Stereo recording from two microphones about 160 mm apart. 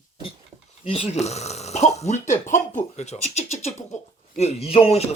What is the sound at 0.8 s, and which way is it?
Speech, 35° left (ahead or behind).